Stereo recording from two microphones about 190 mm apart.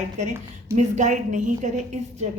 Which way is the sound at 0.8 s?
40° right (ahead or behind).